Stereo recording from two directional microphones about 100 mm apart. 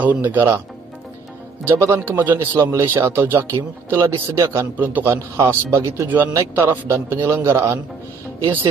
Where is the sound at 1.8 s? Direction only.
25° right (ahead or behind).